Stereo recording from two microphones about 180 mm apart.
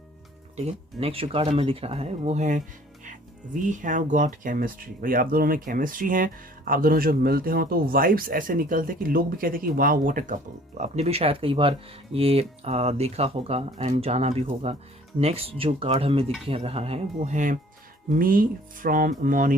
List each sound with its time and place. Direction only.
0.5 s speech: 35° right (ahead or behind)
17.2 s speech: 45° right (ahead or behind)